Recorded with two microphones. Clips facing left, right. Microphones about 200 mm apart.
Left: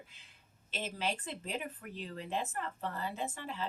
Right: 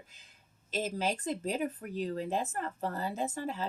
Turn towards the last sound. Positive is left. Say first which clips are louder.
# right 5 dB
turn(degrees=-40)  # may be behind; listen again after turning